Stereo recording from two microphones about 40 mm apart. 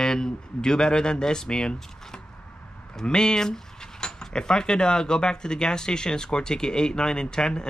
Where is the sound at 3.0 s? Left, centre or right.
Centre.